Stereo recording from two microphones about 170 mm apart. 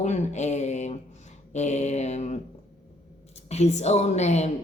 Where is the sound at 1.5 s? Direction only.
40° left (ahead or behind).